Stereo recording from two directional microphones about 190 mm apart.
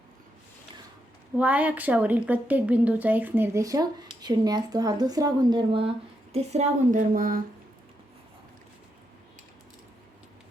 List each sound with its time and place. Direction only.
1.4 s a woman's voice: 10° right (ahead or behind); by 7.4 s 45° right (ahead or behind)